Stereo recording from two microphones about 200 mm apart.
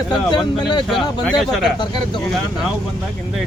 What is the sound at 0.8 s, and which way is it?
Speech, centre (ahead or behind).